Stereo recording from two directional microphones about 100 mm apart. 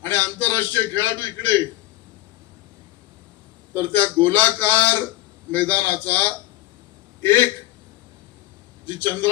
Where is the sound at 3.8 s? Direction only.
20° left (ahead or behind).